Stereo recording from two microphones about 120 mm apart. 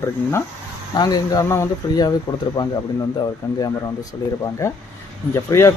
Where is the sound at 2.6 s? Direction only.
40° left (ahead or behind).